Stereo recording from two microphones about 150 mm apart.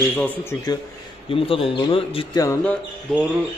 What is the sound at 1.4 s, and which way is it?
Speech, 40° left (ahead or behind).